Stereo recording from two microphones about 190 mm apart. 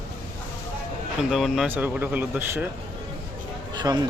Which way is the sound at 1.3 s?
Centre (ahead or behind).